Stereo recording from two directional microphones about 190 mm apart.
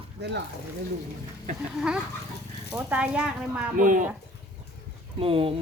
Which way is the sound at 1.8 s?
5° right (ahead or behind).